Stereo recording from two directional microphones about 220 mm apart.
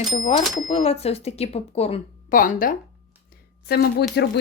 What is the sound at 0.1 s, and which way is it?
A woman's voice, 35° left (ahead or behind).